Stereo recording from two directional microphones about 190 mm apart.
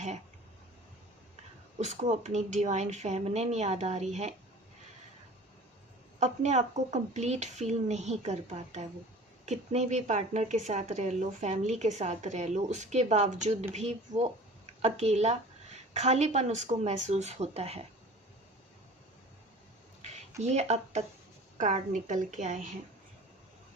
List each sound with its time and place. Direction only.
1.8 s a woman's voice: 40° right (ahead or behind)
6.1 s a woman's voice: 35° right (ahead or behind)
20.0 s a sound: 35° right (ahead or behind)
20.4 s a woman's voice: 35° right (ahead or behind)